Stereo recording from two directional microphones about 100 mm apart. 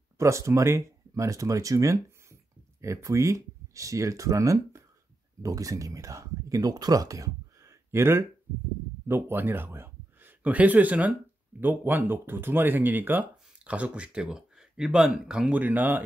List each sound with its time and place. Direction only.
0.2 s speech: 30° right (ahead or behind)